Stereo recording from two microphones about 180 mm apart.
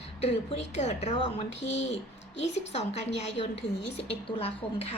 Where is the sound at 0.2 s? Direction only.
35° left (ahead or behind).